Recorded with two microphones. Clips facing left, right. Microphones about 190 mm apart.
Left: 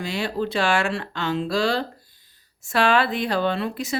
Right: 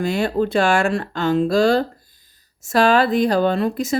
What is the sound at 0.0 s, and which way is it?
Speech, 50° right (ahead or behind).